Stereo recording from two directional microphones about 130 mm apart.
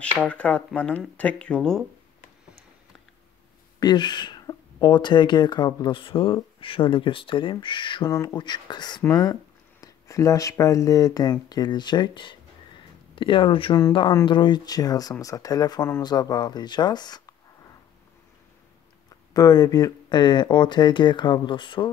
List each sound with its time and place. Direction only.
0.3 s speech: 10° left (ahead or behind)
3.8 s speech: 35° left (ahead or behind)
8.1 s speech: 25° left (ahead or behind)
19.3 s speech: 30° left (ahead or behind)